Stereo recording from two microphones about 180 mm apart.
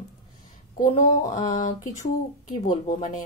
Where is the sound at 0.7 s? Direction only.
50° left (ahead or behind).